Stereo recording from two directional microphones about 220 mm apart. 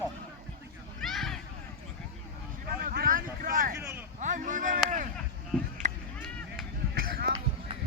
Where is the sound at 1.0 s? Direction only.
Centre (ahead or behind).